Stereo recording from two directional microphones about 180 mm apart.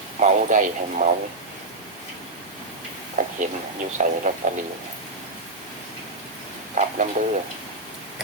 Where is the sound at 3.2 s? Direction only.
45° right (ahead or behind).